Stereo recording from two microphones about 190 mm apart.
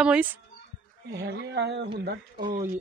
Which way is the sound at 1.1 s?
60° right (ahead or behind).